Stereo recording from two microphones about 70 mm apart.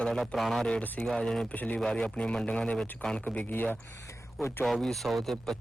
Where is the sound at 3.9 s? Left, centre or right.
Left.